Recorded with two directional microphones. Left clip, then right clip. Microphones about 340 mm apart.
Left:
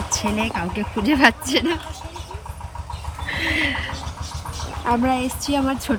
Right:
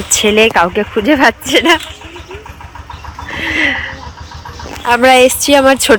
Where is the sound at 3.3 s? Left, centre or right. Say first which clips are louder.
Right 8 dB; centre.